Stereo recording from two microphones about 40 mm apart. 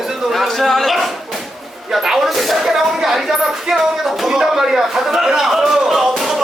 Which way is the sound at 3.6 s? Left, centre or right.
Centre.